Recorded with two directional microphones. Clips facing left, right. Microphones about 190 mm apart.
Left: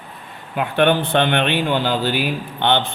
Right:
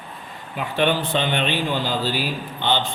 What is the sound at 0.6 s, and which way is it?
Speech, 60° left (ahead or behind).